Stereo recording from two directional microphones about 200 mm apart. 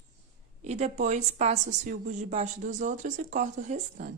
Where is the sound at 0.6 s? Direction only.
35° right (ahead or behind).